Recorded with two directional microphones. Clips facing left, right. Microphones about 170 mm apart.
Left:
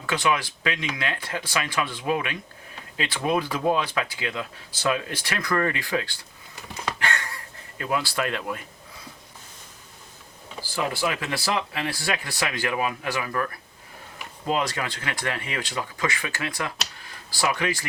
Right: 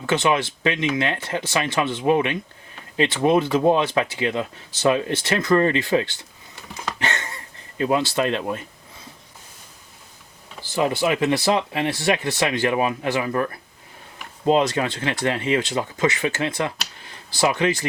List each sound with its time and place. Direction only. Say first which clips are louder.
0.0 s speech: right 5 dB; 25° right (ahead or behind)
7.0 s a sound: right 2 dB; 20° right (ahead or behind)
10.6 s speech: right 5 dB; 20° right (ahead or behind)